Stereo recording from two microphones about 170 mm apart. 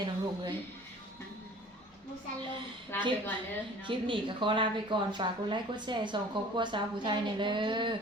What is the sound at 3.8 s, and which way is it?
A woman's voice, 30° right (ahead or behind).